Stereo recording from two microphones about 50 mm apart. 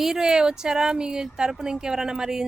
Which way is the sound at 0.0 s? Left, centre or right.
Centre.